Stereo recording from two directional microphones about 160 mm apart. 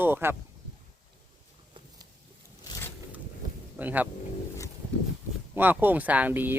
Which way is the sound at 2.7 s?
15° left (ahead or behind).